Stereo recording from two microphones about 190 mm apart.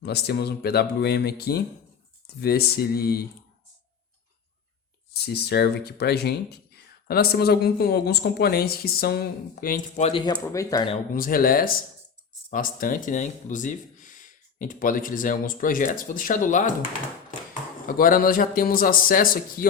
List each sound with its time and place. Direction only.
0.0 s speech: 60° left (ahead or behind)
5.2 s speech: 60° left (ahead or behind)
10.1 s speech: 25° left (ahead or behind)
10.3 s speech: 15° left (ahead or behind)
10.9 s speech: 45° left (ahead or behind)
17.8 s speech: 50° left (ahead or behind)